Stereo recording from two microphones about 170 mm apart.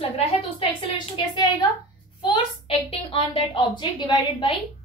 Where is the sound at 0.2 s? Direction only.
30° left (ahead or behind).